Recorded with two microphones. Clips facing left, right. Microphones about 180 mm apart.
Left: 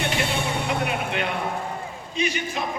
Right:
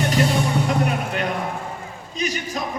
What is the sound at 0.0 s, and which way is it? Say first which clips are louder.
Music: right 5 dB; 40° right (ahead or behind).